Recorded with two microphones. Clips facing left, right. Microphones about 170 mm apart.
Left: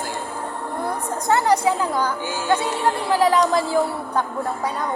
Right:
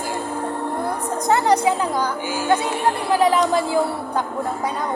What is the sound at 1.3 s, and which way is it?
Speech, 20° right (ahead or behind).